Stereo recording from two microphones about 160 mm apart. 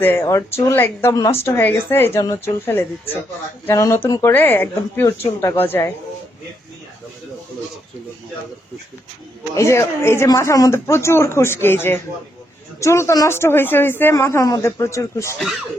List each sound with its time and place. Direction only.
0.0 s speech: 15° left (ahead or behind)
9.6 s speech: 15° left (ahead or behind)